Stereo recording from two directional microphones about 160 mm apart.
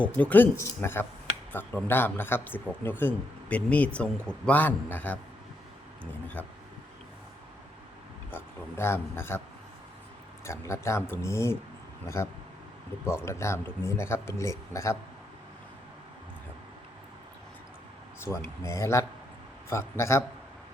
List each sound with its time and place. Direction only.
0.0 s speech: 10° left (ahead or behind)
8.3 s speech: 15° left (ahead or behind)
10.4 s speech: 15° left (ahead or behind)
18.6 s speech: 20° left (ahead or behind)